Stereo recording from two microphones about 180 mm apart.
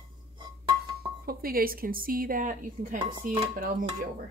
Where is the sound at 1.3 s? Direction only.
55° right (ahead or behind).